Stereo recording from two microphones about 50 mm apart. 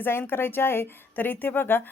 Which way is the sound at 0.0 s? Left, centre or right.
Left.